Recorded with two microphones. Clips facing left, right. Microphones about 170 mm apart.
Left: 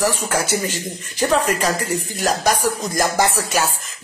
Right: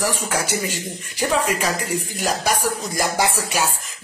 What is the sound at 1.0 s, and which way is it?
Speech, 10° right (ahead or behind).